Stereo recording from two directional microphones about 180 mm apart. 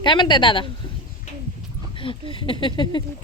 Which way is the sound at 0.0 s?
25° left (ahead or behind).